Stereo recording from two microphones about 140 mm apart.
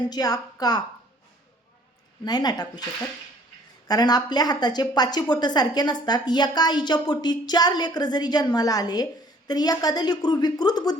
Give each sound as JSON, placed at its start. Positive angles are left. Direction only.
{"t": 0.1, "sound": "a woman's voice", "side_deg": 30}
{"t": 2.2, "sound": "a woman's voice", "side_deg": 30}
{"t": 3.8, "sound": "a woman's voice", "side_deg": 30}